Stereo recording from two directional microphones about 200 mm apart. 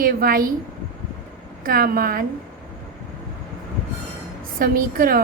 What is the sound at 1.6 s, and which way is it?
Speech, 45° right (ahead or behind).